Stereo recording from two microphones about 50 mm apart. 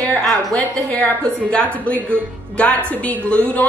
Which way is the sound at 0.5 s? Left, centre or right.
Left.